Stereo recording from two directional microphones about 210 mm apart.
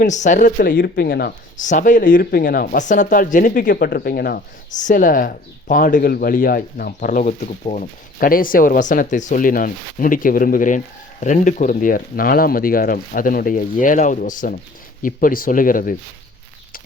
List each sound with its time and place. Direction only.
0.0 s speech: 35° left (ahead or behind)